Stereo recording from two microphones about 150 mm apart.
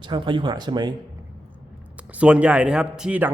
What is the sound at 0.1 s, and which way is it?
Speech, 30° right (ahead or behind).